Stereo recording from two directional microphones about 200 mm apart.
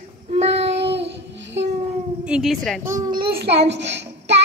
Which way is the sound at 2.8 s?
15° right (ahead or behind).